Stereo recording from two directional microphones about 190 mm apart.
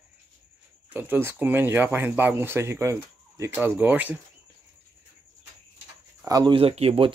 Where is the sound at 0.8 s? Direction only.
10° right (ahead or behind).